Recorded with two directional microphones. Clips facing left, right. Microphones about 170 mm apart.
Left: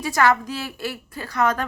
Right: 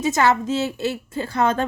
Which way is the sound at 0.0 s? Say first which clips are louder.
Right 1 dB; 25° right (ahead or behind).